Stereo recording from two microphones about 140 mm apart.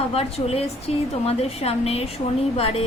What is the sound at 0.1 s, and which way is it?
A woman's voice, 45° left (ahead or behind).